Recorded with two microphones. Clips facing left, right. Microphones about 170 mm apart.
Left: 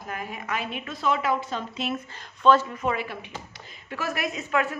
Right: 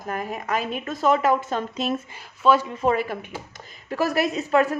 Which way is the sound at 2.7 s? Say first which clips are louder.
Right 6 dB; 35° right (ahead or behind).